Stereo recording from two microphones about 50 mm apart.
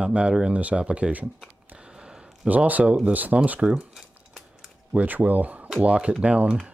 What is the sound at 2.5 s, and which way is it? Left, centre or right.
Speech, right.